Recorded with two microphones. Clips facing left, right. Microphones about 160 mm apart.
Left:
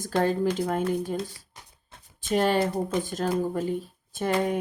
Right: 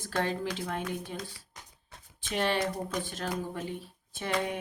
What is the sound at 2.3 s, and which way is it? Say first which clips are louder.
Speech: left 6 dB; 45° left (ahead or behind).